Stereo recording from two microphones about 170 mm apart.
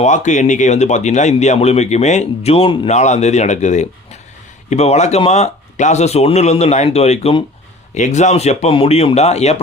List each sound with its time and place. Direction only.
0.0 s speech: 45° left (ahead or behind)